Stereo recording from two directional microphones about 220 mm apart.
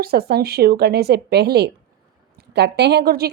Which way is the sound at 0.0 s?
45° right (ahead or behind).